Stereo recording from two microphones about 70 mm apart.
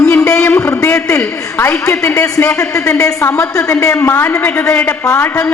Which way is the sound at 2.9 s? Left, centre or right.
Left.